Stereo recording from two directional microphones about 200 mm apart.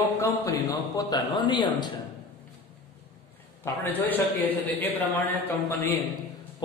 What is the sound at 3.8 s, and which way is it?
Speech, 10° left (ahead or behind).